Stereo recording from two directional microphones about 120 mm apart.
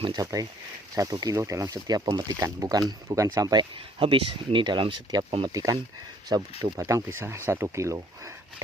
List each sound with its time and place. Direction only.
0.2 s speech: 30° right (ahead or behind)
4.0 s speech: 45° right (ahead or behind)
5.5 s speech: 30° right (ahead or behind)